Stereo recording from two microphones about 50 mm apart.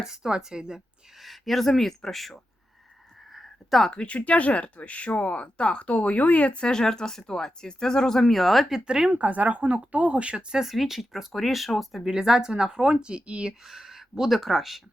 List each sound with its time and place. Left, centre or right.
0.0 s speech: centre
1.2 s speech: centre
3.3 s a sound: centre
3.9 s speech: left
6.7 s speech: centre
8.8 s speech: centre
13.7 s speech: centre